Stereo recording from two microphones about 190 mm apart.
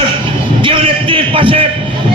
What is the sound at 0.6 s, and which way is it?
Speech, 30° right (ahead or behind).